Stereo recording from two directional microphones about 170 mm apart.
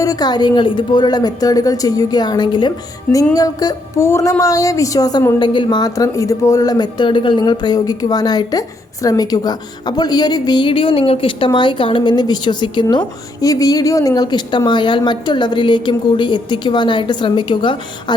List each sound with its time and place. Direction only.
0.0 s speech: 20° left (ahead or behind)